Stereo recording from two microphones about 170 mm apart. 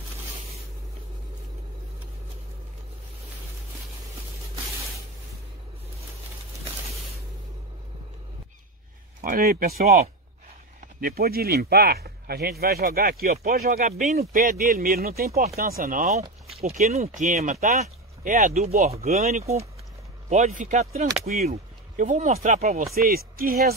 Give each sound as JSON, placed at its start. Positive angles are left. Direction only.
{"t": 9.2, "sound": "speech", "side_deg": -55}
{"t": 22.9, "sound": "speech", "side_deg": -60}